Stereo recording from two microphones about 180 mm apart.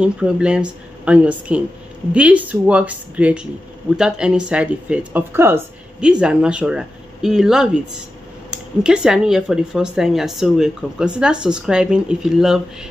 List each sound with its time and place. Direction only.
0.0 s speech: 5° right (ahead or behind)